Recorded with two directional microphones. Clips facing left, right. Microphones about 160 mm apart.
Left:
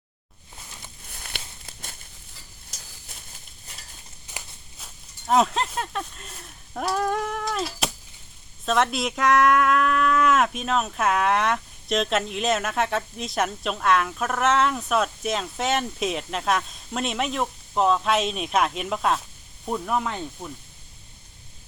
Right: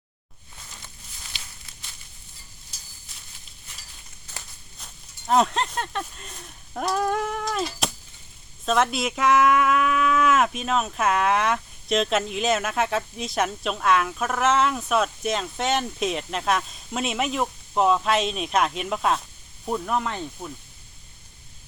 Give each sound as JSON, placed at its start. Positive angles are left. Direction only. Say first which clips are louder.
{"t": 1.1, "sound": "walk", "louder": "left 7 dB", "side_deg": 55}
{"t": 4.3, "sound": "walk", "louder": "left 2 dB", "side_deg": 15}
{"t": 4.8, "sound": "a sound", "louder": "even", "side_deg": 0}
{"t": 8.6, "sound": "speech", "louder": "even", "side_deg": 0}